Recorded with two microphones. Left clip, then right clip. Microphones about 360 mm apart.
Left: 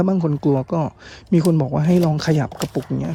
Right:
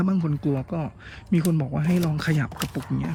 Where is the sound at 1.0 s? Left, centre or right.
Centre.